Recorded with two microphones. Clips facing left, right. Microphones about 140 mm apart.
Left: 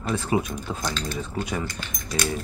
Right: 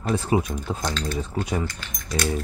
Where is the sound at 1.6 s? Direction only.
5° left (ahead or behind).